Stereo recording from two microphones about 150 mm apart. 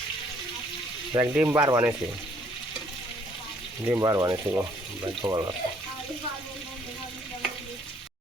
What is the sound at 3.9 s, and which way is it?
Speech, 25° right (ahead or behind).